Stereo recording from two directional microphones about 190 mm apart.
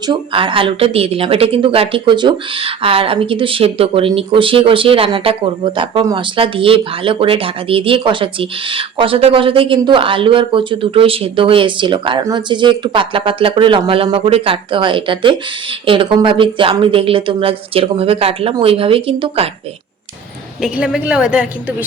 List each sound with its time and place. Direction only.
0.1 s speech: 25° right (ahead or behind)
20.6 s a woman's voice: 5° right (ahead or behind)